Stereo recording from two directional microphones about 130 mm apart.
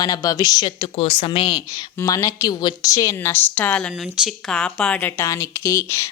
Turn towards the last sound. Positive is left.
turn(degrees=20)  # may be behind; listen again after turning